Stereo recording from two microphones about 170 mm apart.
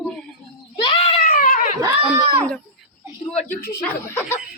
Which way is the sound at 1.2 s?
55° left (ahead or behind).